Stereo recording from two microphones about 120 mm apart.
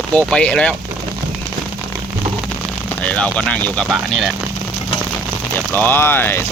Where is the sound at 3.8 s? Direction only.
Centre (ahead or behind).